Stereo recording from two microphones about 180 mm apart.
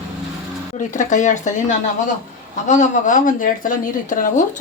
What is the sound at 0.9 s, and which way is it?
Speech, 45° left (ahead or behind).